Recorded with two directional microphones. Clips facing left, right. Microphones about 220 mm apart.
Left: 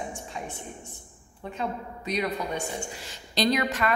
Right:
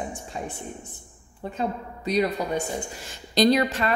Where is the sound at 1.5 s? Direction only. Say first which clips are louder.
Right 3 dB; 35° right (ahead or behind).